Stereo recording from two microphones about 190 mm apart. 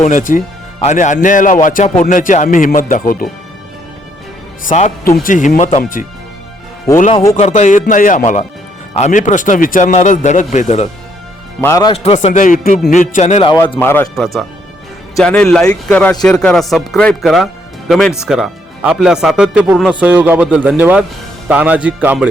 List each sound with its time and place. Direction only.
0.0 s a man's voice: 45° left (ahead or behind)
4.6 s a man's voice: 35° left (ahead or behind)
5.0 s a man's voice: 50° left (ahead or behind)
7.3 s a man's voice: 35° left (ahead or behind)
11.6 s speech: 20° left (ahead or behind)
12.0 s a man's voice: 35° left (ahead or behind)
13.7 s speech: 10° left (ahead or behind); by 22.3 s 10° right (ahead or behind)